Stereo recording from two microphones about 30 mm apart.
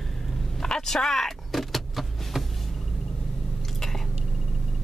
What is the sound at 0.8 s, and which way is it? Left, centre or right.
Vehicle, centre.